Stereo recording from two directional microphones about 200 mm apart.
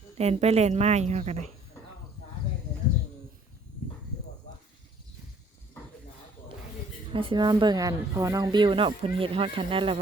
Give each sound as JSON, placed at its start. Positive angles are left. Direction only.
{"t": 0.2, "sound": "a woman's voice", "side_deg": -30}
{"t": 7.1, "sound": "speech", "side_deg": -25}